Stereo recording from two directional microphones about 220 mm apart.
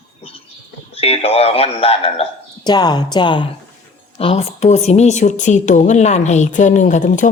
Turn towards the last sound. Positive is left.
turn(degrees=35)  # may be behind; listen again after turning